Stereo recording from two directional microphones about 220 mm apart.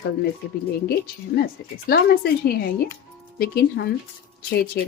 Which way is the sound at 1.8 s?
45° left (ahead or behind).